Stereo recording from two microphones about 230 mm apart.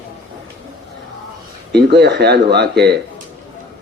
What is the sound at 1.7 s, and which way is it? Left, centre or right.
A man's voice, right.